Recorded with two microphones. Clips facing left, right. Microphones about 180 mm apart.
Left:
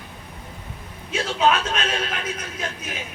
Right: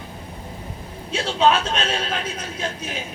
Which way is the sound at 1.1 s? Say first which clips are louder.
Right 2 dB; 30° right (ahead or behind).